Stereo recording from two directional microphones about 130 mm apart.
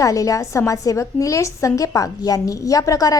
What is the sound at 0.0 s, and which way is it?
A woman's voice, 25° left (ahead or behind).